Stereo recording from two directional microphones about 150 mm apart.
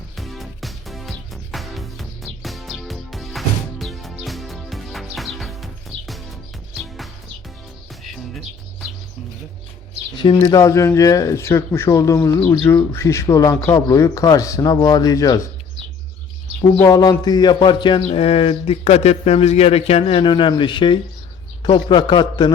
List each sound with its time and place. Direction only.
0.2 s music: centre (ahead or behind)
10.5 s speech: 20° left (ahead or behind)
16.8 s speech: 25° left (ahead or behind)